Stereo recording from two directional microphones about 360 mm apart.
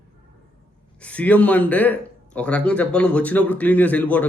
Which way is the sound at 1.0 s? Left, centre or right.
Centre.